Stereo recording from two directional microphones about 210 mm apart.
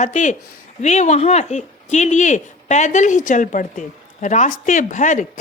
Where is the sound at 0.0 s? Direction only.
35° left (ahead or behind).